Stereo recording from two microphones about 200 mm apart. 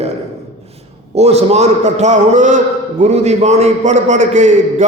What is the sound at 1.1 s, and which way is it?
A man's voice, 30° right (ahead or behind).